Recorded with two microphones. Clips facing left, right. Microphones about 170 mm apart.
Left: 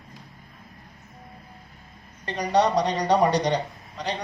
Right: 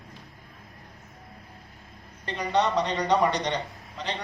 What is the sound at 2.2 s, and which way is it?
A man's voice, 40° left (ahead or behind).